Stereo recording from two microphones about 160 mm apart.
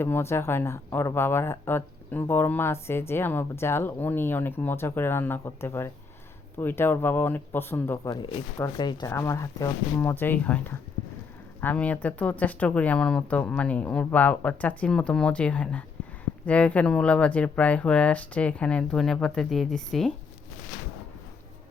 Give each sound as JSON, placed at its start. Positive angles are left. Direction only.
{"t": 0.0, "sound": "speech", "side_deg": 15}